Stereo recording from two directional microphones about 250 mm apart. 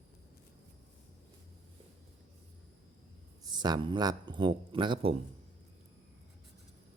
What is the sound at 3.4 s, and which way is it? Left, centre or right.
Speech, centre.